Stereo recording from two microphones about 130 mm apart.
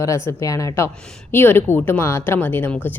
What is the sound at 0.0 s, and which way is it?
A woman's voice, 25° left (ahead or behind).